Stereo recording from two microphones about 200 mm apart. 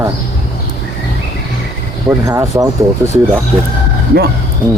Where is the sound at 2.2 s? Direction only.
15° right (ahead or behind).